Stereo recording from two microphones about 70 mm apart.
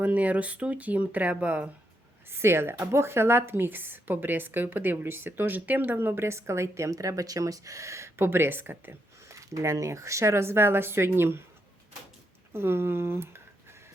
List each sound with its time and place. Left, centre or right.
0.0 s speech: right
2.3 s a woman's voice: right
9.3 s a woman's voice: right
12.5 s a woman's voice: right